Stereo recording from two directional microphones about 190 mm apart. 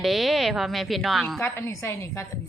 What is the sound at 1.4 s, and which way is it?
Speech, 10° left (ahead or behind).